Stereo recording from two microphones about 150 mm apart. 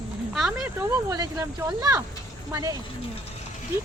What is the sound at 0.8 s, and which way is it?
Speech, 20° right (ahead or behind).